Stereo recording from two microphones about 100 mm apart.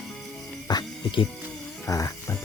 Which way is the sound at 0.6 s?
50° left (ahead or behind).